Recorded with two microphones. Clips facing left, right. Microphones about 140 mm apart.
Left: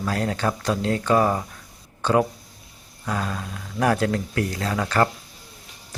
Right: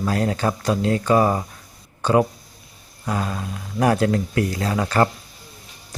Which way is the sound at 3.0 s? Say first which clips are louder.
Right 2 dB; 15° right (ahead or behind).